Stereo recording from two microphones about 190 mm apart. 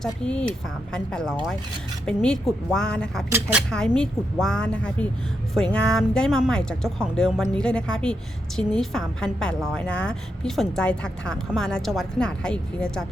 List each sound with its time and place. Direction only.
0.0 s a woman's voice: 5° left (ahead or behind)
3.2 s speech: 10° right (ahead or behind)
3.7 s a woman's voice: 5° left (ahead or behind)